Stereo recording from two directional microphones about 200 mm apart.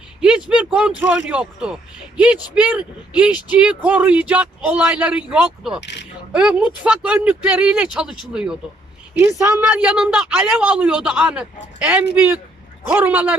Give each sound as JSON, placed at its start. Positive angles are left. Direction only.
{"t": 0.2, "sound": "a woman's voice", "side_deg": -5}
{"t": 5.8, "sound": "speech", "side_deg": 60}
{"t": 6.3, "sound": "a woman's voice", "side_deg": -5}